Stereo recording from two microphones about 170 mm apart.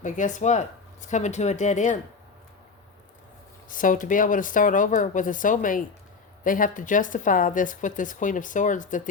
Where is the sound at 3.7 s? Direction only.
50° left (ahead or behind).